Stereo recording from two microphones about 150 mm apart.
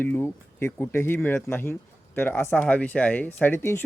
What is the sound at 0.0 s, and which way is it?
Speech, 15° left (ahead or behind).